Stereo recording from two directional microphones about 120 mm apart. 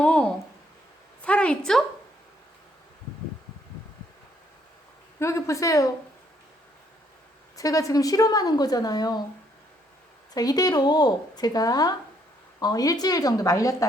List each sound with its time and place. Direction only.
0.0 s a sound: 10° left (ahead or behind)
5.2 s speech: 25° left (ahead or behind)
7.5 s speech: 30° left (ahead or behind)
10.3 s speech: 30° left (ahead or behind)